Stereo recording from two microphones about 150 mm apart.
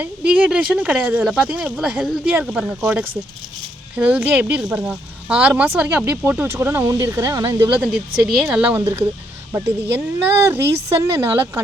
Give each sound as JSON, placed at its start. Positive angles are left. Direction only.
{"t": 0.0, "sound": "speech", "side_deg": -10}
{"t": 8.4, "sound": "speech", "side_deg": -5}